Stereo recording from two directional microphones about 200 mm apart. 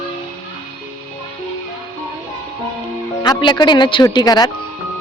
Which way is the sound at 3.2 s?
20° left (ahead or behind).